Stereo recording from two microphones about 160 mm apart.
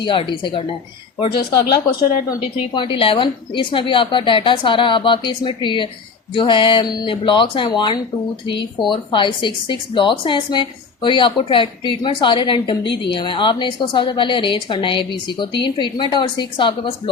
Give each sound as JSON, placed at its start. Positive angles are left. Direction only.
{"t": 0.0, "sound": "a woman's voice", "side_deg": 30}